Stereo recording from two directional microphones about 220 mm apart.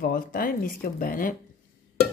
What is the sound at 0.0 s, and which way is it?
Speech, 40° left (ahead or behind).